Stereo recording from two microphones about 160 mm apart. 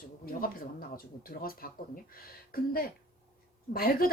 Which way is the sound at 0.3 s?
65° left (ahead or behind).